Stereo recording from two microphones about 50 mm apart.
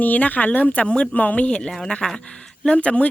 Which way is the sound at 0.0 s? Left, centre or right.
Left.